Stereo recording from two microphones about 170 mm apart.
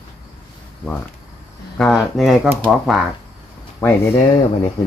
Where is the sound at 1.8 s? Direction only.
Centre (ahead or behind).